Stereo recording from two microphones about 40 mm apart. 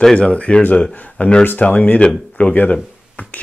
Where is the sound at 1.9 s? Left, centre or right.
Left.